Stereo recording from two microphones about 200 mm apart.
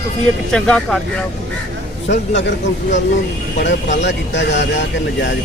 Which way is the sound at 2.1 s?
55° left (ahead or behind).